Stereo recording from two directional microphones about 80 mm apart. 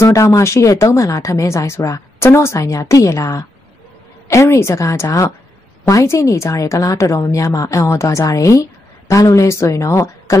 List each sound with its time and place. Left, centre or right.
0.0 s a woman's voice: left